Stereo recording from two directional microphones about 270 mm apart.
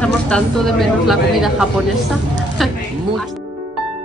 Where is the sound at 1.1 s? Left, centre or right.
Centre.